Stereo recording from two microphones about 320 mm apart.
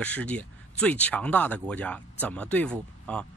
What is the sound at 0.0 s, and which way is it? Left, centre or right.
Speech, centre.